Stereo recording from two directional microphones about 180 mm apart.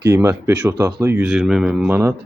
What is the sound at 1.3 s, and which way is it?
Speech, centre (ahead or behind).